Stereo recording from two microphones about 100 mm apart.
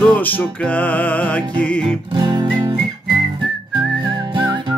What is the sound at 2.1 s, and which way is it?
Music, 50° right (ahead or behind).